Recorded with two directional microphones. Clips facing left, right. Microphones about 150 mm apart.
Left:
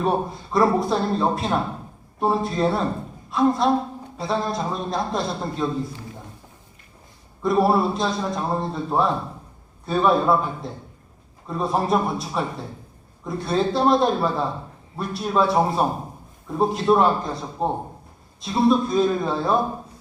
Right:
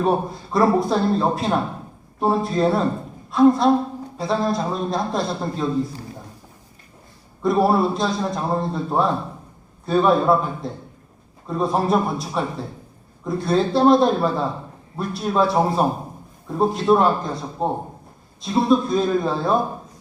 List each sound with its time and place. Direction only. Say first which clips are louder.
0.0 s a man's voice: right 2 dB; centre (ahead or behind)
7.4 s a man's voice: right 1 dB; centre (ahead or behind)